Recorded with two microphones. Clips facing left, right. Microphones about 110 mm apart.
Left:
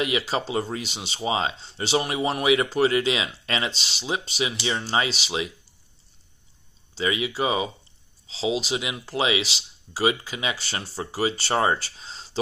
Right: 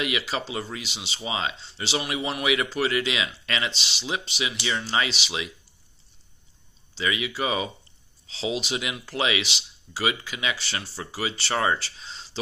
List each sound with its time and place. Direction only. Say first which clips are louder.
0.2 s speech: left 4 dB; 40° left (ahead or behind)
0.8 s speech: left 6 dB; 45° left (ahead or behind)
1.7 s speech: left 4 dB; 45° left (ahead or behind)
7.0 s speech: left 2 dB; 30° left (ahead or behind)
10.6 s speech: left 2 dB; 45° left (ahead or behind)
11.5 s speech: left 2 dB; 30° left (ahead or behind)
11.8 s a sound: even; 40° left (ahead or behind)